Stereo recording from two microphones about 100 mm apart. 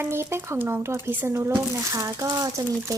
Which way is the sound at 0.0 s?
25° right (ahead or behind).